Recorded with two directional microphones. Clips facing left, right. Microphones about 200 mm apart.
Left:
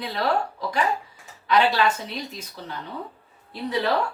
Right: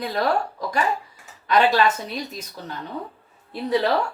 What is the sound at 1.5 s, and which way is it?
Speech, 45° right (ahead or behind).